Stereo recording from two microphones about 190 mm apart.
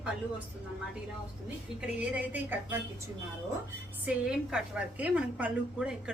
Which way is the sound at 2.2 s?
10° right (ahead or behind).